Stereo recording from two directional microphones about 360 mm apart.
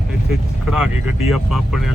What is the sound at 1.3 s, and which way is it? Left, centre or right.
Speech, centre.